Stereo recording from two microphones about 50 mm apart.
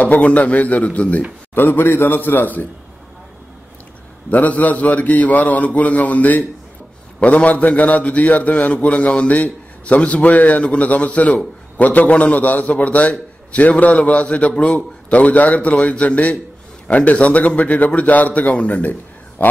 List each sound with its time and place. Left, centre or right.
0.0 s a man's voice: left
1.5 s a man's voice: left
4.3 s a man's voice: left